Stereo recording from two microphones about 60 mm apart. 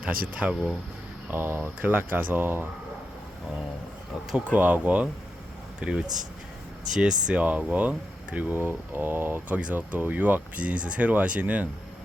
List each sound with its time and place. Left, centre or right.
0.0 s speech: right
1.3 s speech: right
4.5 s speech: right